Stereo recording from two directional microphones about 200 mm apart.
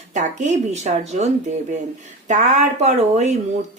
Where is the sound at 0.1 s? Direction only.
35° right (ahead or behind).